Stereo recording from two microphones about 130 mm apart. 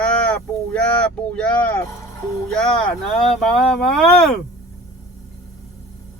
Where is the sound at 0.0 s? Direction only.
10° left (ahead or behind).